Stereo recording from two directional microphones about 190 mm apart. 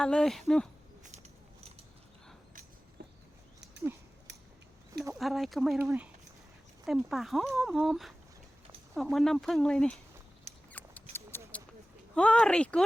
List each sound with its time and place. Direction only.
0.0 s speech: 5° left (ahead or behind)
3.0 s a sound: 55° right (ahead or behind)
4.3 s scissors: 65° right (ahead or behind)
5.1 s speech: centre (ahead or behind)
5.8 s speech: 10° right (ahead or behind)
6.8 s speech: centre (ahead or behind)
10.7 s scissors: 10° left (ahead or behind)
11.1 s a sound: 10° left (ahead or behind)
12.1 s speech: 5° left (ahead or behind)